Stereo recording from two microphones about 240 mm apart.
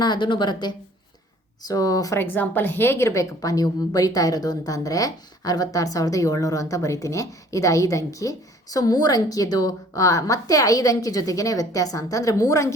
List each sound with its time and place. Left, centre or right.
0.0 s speech: centre